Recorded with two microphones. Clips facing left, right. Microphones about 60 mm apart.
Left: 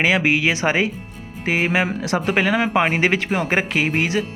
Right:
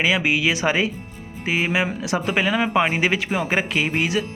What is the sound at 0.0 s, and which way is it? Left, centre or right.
Speech, left.